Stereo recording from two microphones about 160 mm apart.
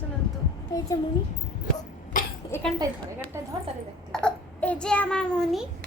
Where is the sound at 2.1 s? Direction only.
55° left (ahead or behind).